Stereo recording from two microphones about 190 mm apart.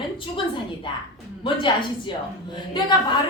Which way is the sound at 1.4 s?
25° left (ahead or behind).